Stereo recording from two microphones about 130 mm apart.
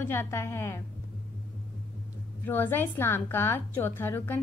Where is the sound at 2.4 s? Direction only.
15° left (ahead or behind).